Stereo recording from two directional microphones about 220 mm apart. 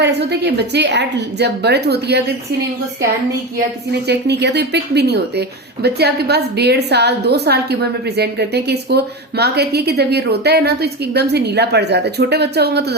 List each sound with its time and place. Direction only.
0.0 s a woman's voice: 50° right (ahead or behind)
4.0 s a woman's voice: 50° right (ahead or behind)